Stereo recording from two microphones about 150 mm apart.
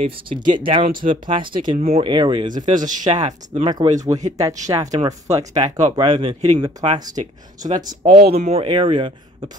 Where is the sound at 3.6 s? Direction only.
25° right (ahead or behind).